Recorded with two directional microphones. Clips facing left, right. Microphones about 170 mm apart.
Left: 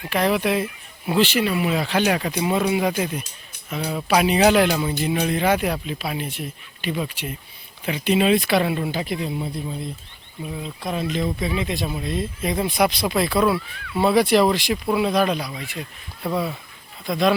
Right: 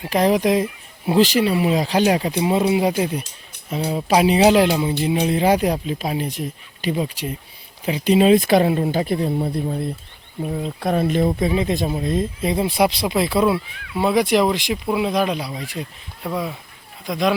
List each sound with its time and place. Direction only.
0.0 s speech: 35° right (ahead or behind); by 9.9 s 55° right (ahead or behind)
10.4 s speech: 45° right (ahead or behind)
12.5 s speech: 30° right (ahead or behind)
15.4 s speech: 35° right (ahead or behind)
16.2 s speech: 10° right (ahead or behind)